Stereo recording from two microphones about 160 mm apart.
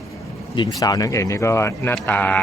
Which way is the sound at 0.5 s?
25° left (ahead or behind).